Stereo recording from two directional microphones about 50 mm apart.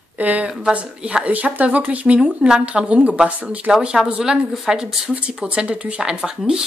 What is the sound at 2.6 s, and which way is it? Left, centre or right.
Speech, right.